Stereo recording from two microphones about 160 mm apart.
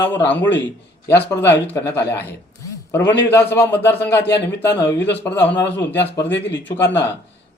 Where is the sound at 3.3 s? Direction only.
15° left (ahead or behind).